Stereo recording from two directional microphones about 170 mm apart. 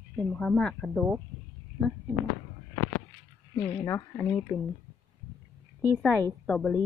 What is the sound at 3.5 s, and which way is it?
Speech, 20° left (ahead or behind).